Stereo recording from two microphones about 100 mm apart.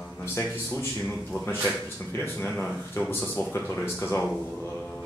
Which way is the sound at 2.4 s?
10° left (ahead or behind).